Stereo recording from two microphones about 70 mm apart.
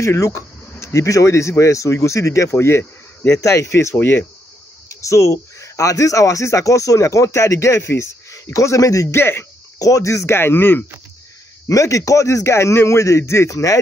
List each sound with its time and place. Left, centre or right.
0.0 s speech: left
2.5 s speech: left
3.3 s speech: left
3.9 s speech: left
4.8 s speech: left
9.1 s speech: left
9.8 s speech: left
11.6 s speech: left